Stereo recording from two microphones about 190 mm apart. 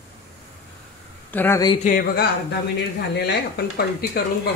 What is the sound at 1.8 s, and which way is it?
Speech, 50° left (ahead or behind).